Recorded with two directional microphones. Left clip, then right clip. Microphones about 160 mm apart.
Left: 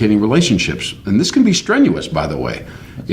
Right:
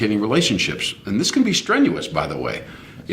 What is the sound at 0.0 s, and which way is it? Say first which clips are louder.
Speech: left 4 dB; 20° right (ahead or behind).